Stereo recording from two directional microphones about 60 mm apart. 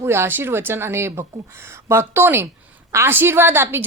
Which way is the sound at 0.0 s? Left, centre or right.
Right.